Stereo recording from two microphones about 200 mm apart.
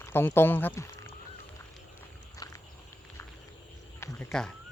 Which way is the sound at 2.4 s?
20° left (ahead or behind).